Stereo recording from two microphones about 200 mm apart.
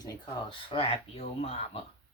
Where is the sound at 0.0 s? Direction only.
20° left (ahead or behind).